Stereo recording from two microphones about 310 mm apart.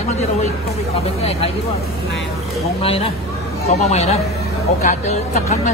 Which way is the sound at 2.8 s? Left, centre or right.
Centre.